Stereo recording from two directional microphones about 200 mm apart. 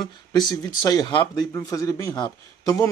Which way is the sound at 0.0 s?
20° left (ahead or behind).